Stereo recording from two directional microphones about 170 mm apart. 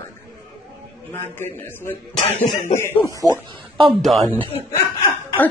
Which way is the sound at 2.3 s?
45° left (ahead or behind).